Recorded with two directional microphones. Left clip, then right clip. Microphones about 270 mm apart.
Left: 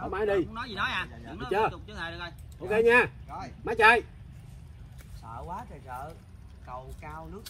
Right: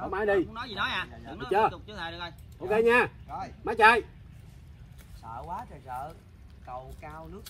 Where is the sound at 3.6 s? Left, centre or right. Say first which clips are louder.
Even; centre.